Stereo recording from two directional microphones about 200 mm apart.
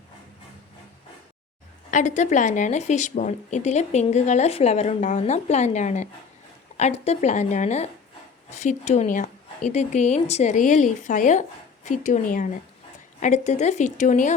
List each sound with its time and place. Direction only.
1.9 s speech: 35° left (ahead or behind)